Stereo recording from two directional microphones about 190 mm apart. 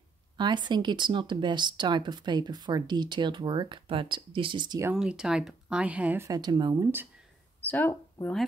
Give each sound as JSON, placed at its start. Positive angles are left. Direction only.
{"t": 0.4, "sound": "speech", "side_deg": -25}
{"t": 4.9, "sound": "speech", "side_deg": -5}
{"t": 7.6, "sound": "speech", "side_deg": 10}